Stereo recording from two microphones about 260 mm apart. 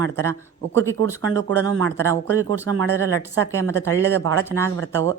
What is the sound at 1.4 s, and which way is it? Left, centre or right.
Speech, right.